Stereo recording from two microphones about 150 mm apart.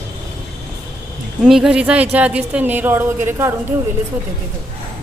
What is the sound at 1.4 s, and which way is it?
A woman's voice, 5° right (ahead or behind).